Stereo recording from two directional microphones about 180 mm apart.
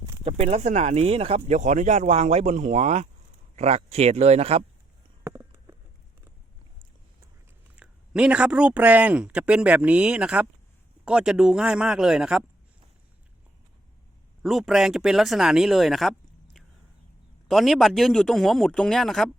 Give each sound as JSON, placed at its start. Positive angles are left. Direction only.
{"t": 0.0, "sound": "speech", "side_deg": -35}
{"t": 5.2, "sound": "a sound", "side_deg": -15}
{"t": 7.8, "sound": "speech", "side_deg": -5}
{"t": 14.4, "sound": "speech", "side_deg": 0}